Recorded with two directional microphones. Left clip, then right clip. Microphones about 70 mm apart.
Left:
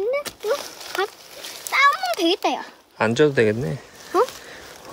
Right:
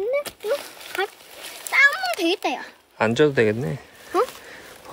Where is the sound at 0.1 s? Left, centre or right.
Centre.